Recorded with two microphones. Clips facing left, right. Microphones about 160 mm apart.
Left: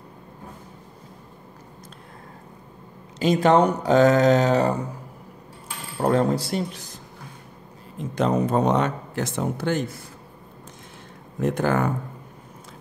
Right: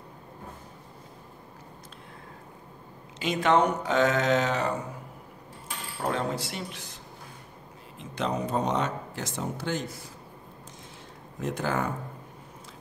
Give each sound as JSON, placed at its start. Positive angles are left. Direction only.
{"t": 3.2, "sound": "speech", "side_deg": 35}
{"t": 5.9, "sound": "speech", "side_deg": 45}
{"t": 8.0, "sound": "speech", "side_deg": 45}
{"t": 11.4, "sound": "speech", "side_deg": 55}